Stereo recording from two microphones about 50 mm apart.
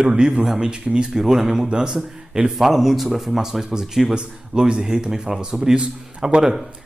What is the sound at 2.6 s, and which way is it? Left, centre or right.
Speech, centre.